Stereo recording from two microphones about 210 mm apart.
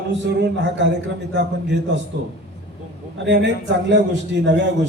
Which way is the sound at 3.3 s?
60° right (ahead or behind).